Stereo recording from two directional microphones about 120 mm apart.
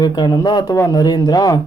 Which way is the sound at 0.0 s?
35° left (ahead or behind).